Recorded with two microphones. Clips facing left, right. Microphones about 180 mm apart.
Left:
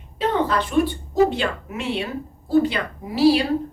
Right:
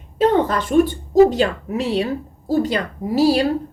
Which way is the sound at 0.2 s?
45° right (ahead or behind).